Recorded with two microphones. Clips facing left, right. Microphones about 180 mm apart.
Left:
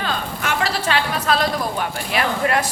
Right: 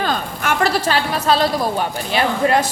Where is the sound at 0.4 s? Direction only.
45° right (ahead or behind).